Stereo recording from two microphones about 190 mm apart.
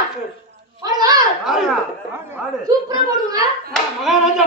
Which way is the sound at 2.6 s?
20° right (ahead or behind).